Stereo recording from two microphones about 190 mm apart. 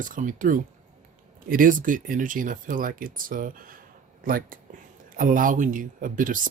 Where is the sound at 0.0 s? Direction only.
45° right (ahead or behind).